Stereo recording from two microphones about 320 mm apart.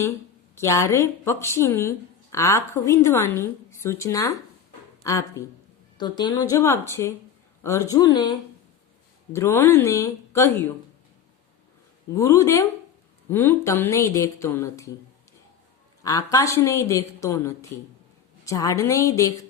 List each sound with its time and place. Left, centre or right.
0.5 s speech: centre
9.3 s speech: centre
12.1 s speech: centre
16.0 s speech: centre